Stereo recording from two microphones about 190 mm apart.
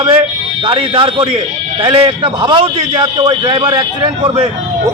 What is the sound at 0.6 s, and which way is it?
A man's voice, 25° right (ahead or behind).